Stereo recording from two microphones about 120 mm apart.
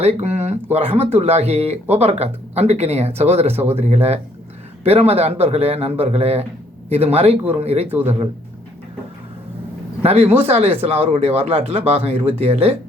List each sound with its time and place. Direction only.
0.0 s speech: 65° right (ahead or behind)
7.9 s speech: 15° right (ahead or behind)
10.0 s speech: 55° right (ahead or behind)